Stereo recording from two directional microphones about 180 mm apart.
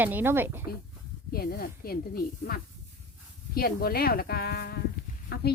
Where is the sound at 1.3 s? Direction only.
55° left (ahead or behind).